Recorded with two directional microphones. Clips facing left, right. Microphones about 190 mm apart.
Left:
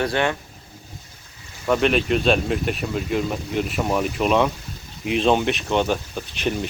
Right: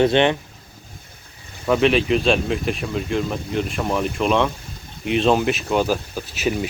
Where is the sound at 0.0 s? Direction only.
25° right (ahead or behind).